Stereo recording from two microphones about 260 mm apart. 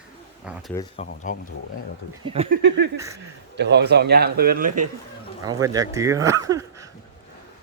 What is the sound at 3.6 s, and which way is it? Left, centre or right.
A man's voice, right.